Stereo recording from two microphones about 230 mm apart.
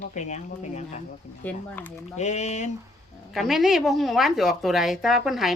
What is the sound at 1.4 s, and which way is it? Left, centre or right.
Speech, centre.